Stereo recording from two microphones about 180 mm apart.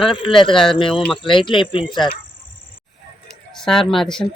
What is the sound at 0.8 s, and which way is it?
Speech, 30° left (ahead or behind).